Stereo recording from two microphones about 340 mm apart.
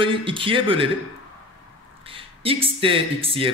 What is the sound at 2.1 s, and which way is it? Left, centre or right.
Speech, centre.